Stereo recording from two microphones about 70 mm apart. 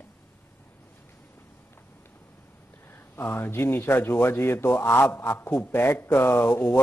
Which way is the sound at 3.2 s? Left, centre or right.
Left.